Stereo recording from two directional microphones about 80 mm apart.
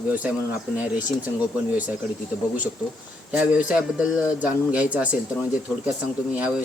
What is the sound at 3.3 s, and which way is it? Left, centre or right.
A man's voice, centre.